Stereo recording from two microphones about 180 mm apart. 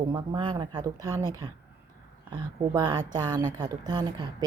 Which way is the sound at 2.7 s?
20° right (ahead or behind).